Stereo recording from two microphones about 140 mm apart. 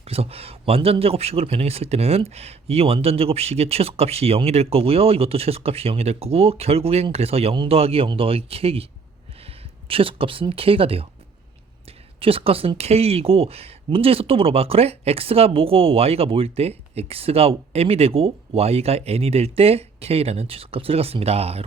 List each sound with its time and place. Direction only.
0.0 s speech: 45° right (ahead or behind)
9.9 s speech: 40° right (ahead or behind)
12.2 s speech: 40° right (ahead or behind)